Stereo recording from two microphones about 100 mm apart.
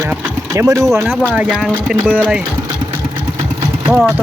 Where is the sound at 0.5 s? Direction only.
30° right (ahead or behind).